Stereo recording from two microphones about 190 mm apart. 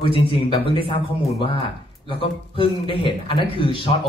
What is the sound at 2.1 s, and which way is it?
Speech, 25° left (ahead or behind).